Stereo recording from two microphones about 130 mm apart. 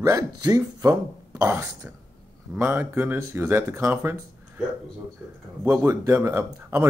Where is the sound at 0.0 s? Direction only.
25° right (ahead or behind).